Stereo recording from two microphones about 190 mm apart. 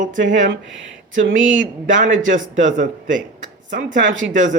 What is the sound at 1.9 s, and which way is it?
Speech, 45° right (ahead or behind).